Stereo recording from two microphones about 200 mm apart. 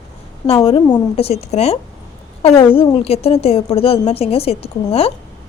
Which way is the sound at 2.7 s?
30° left (ahead or behind).